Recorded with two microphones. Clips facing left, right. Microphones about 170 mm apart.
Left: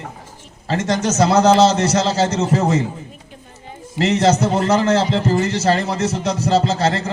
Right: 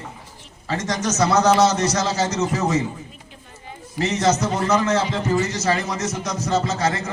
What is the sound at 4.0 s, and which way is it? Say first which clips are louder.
Speech: left 5 dB; 65° left (ahead or behind).